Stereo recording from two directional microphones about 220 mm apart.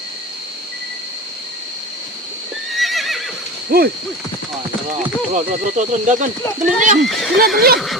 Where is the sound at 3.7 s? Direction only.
40° right (ahead or behind).